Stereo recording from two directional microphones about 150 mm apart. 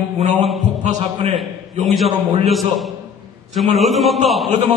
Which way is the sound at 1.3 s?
Centre (ahead or behind).